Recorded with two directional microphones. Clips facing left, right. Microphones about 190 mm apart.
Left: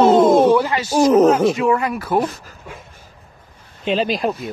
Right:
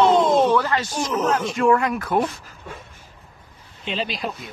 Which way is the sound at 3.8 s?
45° left (ahead or behind).